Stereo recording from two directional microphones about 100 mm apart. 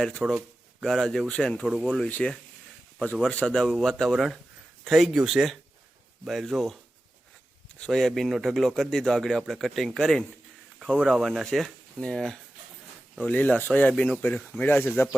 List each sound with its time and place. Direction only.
0.2 s speech: 10° right (ahead or behind)
0.8 s speech: 5° left (ahead or behind)
1.6 s speech: 10° right (ahead or behind)
2.0 s speech: 15° left (ahead or behind)
7.8 s speech: 5° left (ahead or behind); by 15.1 s 20° left (ahead or behind)